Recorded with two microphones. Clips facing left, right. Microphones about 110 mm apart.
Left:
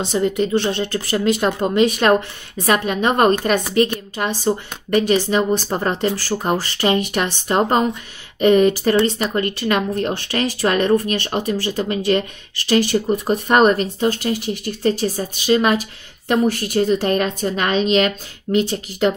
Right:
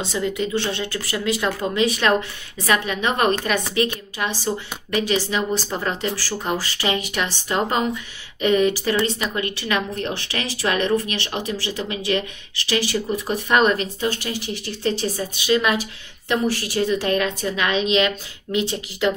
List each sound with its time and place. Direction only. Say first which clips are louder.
0.1 s a woman's voice: left 6 dB; 40° left (ahead or behind)
5.7 s a woman's voice: left 5 dB; 35° left (ahead or behind)
6.5 s speech: left 5 dB; 45° left (ahead or behind)
16.3 s speech: left 4 dB; 50° left (ahead or behind)